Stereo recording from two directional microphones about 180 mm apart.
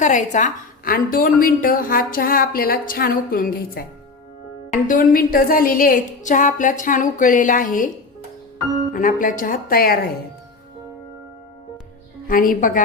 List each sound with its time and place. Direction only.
0.0 s a woman's voice: 45° left (ahead or behind)
8.9 s a woman's voice: 50° left (ahead or behind)
12.3 s a woman's voice: 50° left (ahead or behind)